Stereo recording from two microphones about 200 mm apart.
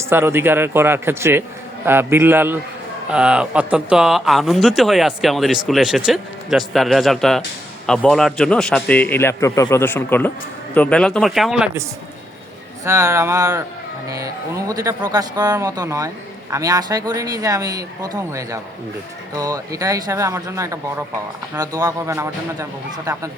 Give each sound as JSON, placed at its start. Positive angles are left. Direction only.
{"t": 0.0, "sound": "a man's voice", "side_deg": -15}
{"t": 12.8, "sound": "speech", "side_deg": -15}